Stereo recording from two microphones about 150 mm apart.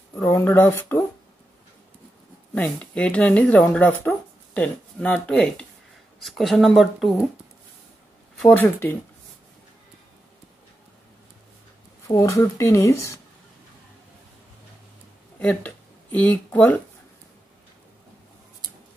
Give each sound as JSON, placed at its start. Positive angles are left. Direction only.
{"t": 0.1, "sound": "speech", "side_deg": 20}
{"t": 2.5, "sound": "speech", "side_deg": 10}
{"t": 8.4, "sound": "speech", "side_deg": 10}
{"t": 12.1, "sound": "speech", "side_deg": 20}
{"t": 15.3, "sound": "speech", "side_deg": 10}